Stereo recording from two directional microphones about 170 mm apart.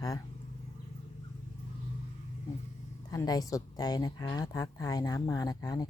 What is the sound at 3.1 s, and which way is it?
A woman's voice, 20° left (ahead or behind).